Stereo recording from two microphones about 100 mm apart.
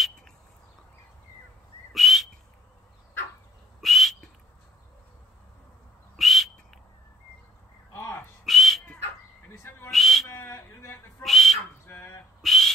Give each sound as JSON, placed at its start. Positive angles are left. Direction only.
{"t": 1.9, "sound": "whistling", "side_deg": 0}
{"t": 3.8, "sound": "whistling", "side_deg": 0}
{"t": 6.1, "sound": "whistle", "side_deg": 0}
{"t": 7.9, "sound": "crow", "side_deg": 25}
{"t": 8.5, "sound": "dog", "side_deg": 0}
{"t": 9.8, "sound": "whistle", "side_deg": 0}
{"t": 10.2, "sound": "a sound", "side_deg": 25}
{"t": 11.2, "sound": "whistle", "side_deg": 0}
{"t": 11.9, "sound": "a sound", "side_deg": 20}
{"t": 12.4, "sound": "a sound", "side_deg": 0}